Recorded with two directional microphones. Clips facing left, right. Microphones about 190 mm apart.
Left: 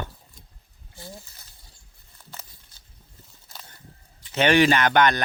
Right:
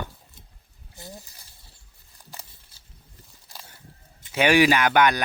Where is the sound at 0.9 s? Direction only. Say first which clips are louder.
Even; 20° right (ahead or behind).